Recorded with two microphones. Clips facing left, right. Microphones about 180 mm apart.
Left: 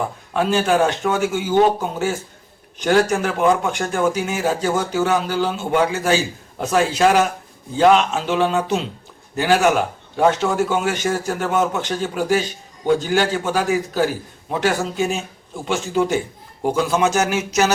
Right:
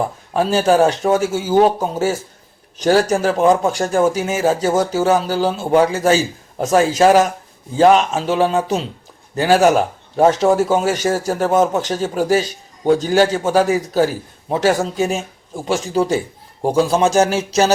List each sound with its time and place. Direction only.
0.3 s speech: 40° right (ahead or behind)